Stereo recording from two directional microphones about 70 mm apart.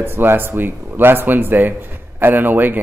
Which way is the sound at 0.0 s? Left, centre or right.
Right.